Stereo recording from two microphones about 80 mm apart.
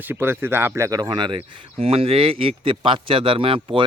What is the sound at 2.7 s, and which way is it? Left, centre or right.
A man's voice, right.